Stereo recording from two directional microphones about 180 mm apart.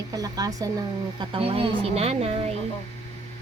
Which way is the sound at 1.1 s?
30° right (ahead or behind).